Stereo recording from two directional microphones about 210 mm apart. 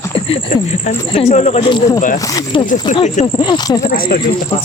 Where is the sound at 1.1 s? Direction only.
30° left (ahead or behind).